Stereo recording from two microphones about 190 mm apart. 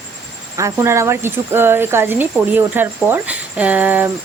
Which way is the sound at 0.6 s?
15° right (ahead or behind).